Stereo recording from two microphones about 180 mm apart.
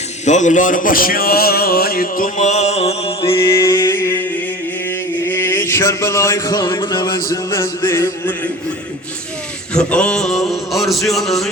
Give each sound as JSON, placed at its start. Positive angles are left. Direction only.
{"t": 0.3, "sound": "a man's voice", "side_deg": 40}
{"t": 3.5, "sound": "music", "side_deg": 20}
{"t": 4.9, "sound": "chant", "side_deg": 15}
{"t": 7.3, "sound": "music", "side_deg": 15}
{"t": 9.7, "sound": "a sound", "side_deg": 5}